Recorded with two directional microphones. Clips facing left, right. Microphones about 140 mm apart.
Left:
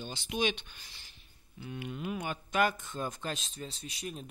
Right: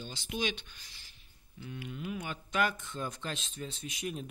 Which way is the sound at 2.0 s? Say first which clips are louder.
Left 2 dB; 55° left (ahead or behind).